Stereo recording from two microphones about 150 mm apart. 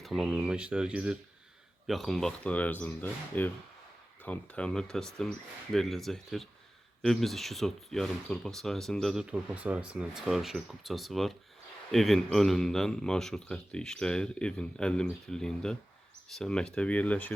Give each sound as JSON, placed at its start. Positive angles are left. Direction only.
{"t": 0.0, "sound": "speech", "side_deg": 0}